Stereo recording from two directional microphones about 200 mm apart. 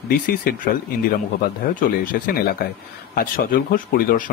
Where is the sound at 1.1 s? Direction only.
45° left (ahead or behind).